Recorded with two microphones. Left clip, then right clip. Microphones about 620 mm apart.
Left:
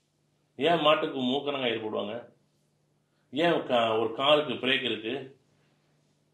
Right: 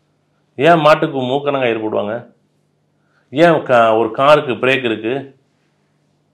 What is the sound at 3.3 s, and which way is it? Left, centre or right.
Speech, right.